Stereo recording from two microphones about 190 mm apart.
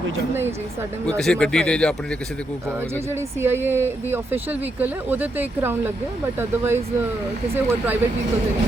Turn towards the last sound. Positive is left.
turn(degrees=-10)  # may be behind; listen again after turning